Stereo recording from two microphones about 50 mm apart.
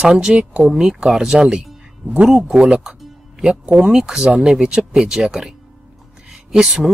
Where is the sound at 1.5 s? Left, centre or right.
Centre.